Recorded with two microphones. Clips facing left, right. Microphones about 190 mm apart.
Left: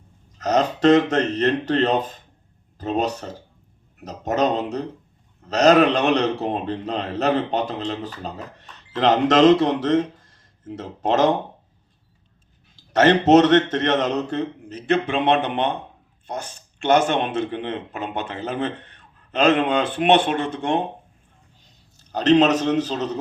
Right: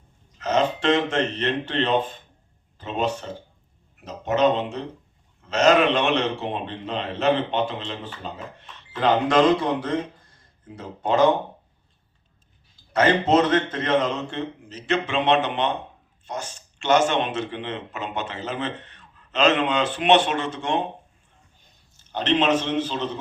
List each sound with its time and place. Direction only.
0.3 s a man's voice: 40° left (ahead or behind)
9.4 s speech: 90° left
12.7 s a man's voice: 80° left
13.6 s a man's voice: 40° left (ahead or behind)
14.7 s a man's voice: 55° left (ahead or behind)
21.9 s a man's voice: 40° left (ahead or behind)